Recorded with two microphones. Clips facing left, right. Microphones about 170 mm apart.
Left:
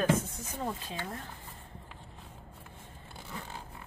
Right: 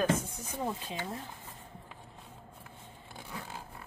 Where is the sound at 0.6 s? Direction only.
10° right (ahead or behind).